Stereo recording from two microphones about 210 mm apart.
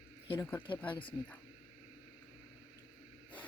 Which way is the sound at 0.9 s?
25° left (ahead or behind).